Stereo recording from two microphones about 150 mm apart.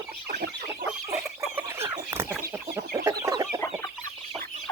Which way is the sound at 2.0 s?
25° right (ahead or behind).